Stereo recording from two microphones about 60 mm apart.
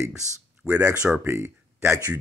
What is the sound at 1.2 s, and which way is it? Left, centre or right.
Speech, right.